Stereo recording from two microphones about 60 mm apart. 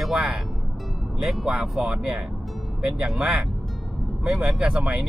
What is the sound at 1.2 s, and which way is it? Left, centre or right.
Speech, centre.